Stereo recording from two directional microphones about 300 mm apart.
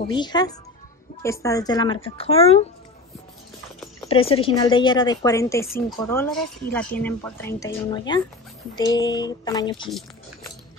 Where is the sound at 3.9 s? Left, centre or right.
Centre.